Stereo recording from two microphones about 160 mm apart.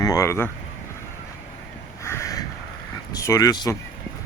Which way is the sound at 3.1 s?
20° left (ahead or behind).